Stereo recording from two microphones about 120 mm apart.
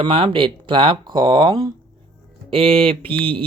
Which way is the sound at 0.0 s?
50° right (ahead or behind).